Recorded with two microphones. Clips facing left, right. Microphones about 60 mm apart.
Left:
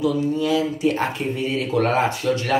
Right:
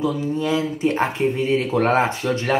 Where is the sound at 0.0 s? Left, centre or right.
Right.